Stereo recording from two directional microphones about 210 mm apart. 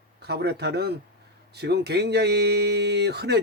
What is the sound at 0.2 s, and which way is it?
Speech, 50° right (ahead or behind).